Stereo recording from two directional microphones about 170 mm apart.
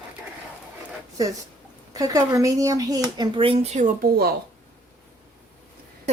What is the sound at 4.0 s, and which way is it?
Speech, 65° right (ahead or behind).